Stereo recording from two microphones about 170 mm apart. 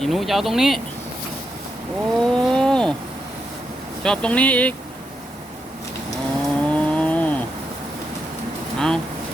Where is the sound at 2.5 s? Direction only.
5° left (ahead or behind).